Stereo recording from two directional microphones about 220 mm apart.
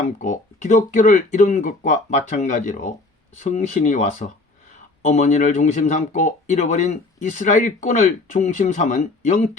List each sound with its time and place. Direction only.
0.0 s speech: 35° left (ahead or behind)